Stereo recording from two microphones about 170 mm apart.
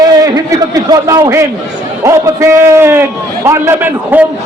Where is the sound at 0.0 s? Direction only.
20° right (ahead or behind).